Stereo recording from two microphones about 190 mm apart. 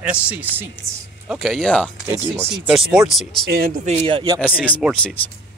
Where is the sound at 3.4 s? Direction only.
50° right (ahead or behind); by 4.4 s 25° right (ahead or behind).